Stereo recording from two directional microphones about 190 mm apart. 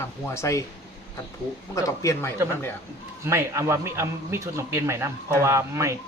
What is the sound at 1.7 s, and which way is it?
Speech, 15° left (ahead or behind).